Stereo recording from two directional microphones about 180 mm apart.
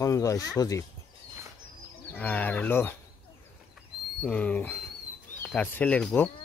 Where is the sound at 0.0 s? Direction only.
15° left (ahead or behind).